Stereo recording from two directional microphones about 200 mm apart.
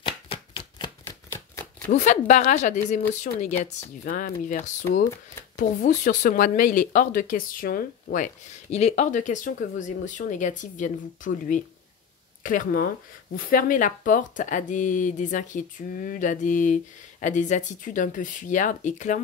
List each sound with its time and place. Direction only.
0.0 s chopping: 25° left (ahead or behind)
1.3 s shuffling cards: 15° left (ahead or behind)
1.9 s speech: 40° left (ahead or behind)
4.0 s speech: 45° left (ahead or behind)